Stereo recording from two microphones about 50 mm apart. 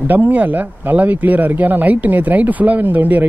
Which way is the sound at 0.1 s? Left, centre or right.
Right.